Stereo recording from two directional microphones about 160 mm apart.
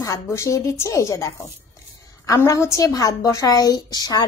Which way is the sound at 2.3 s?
20° left (ahead or behind).